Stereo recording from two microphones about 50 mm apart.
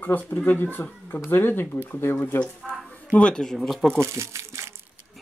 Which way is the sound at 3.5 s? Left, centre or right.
Centre.